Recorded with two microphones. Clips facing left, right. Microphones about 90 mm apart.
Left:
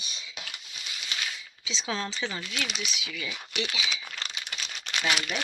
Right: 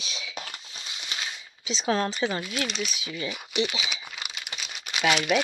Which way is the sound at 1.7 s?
40° right (ahead or behind).